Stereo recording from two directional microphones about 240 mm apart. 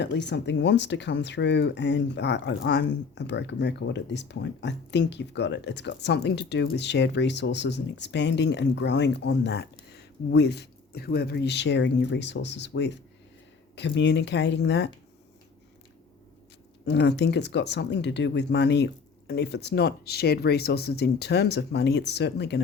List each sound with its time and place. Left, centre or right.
0.0 s speech: left
16.8 s speech: left